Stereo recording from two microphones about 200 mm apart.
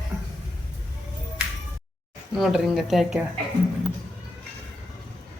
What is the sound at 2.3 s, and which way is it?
Speech, centre (ahead or behind).